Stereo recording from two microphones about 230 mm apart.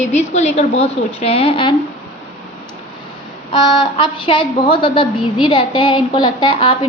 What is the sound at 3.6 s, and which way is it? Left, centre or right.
A woman's voice, left.